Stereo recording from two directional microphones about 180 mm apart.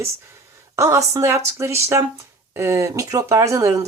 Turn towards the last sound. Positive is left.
turn(degrees=-15)  # may be behind; listen again after turning